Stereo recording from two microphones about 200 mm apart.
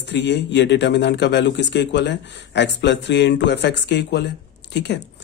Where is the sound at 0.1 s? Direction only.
60° left (ahead or behind).